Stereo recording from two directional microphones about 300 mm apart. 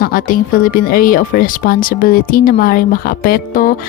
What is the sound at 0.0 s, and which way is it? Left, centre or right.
A woman's voice, left.